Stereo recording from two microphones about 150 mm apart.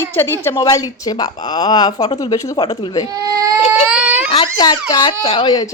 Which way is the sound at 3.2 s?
25° right (ahead or behind).